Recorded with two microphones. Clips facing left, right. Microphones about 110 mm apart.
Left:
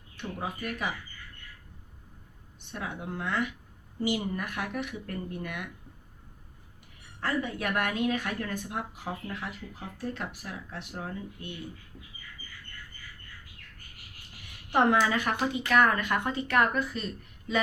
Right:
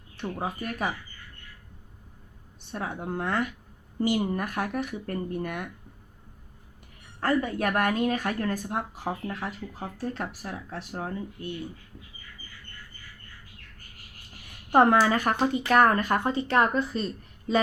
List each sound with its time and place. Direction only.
0.2 s speech: 40° right (ahead or behind)
2.7 s speech: 40° right (ahead or behind)
7.2 s speech: 45° right (ahead or behind)
14.7 s speech: 45° right (ahead or behind)